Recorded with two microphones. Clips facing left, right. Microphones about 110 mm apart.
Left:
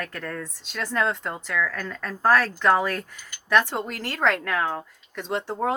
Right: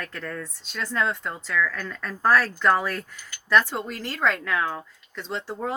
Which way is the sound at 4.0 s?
60° left (ahead or behind).